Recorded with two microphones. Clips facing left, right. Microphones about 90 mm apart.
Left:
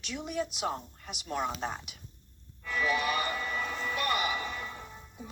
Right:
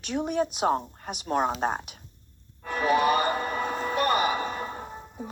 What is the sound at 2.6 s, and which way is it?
Music, 45° right (ahead or behind).